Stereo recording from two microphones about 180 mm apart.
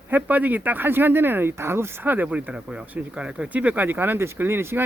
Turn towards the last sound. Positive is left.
turn(degrees=-15)  # may be behind; listen again after turning